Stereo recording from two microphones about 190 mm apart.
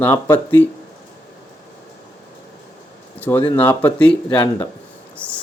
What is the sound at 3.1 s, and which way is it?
Speech, 10° left (ahead or behind).